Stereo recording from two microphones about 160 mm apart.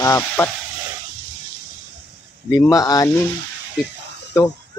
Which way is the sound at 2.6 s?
20° left (ahead or behind).